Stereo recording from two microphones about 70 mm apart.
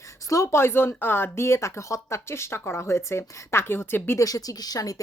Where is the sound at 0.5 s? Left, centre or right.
Left.